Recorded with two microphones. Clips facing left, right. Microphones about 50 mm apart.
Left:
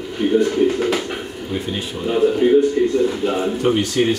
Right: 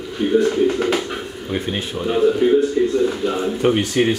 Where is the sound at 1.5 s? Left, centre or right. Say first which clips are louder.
Right 2 dB; right.